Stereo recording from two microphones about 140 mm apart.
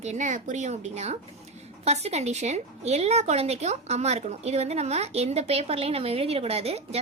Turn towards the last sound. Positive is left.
turn(degrees=-45)  # may be behind; listen again after turning